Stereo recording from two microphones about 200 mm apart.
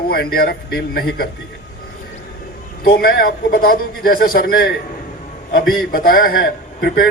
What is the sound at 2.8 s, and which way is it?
A man's voice, 50° left (ahead or behind).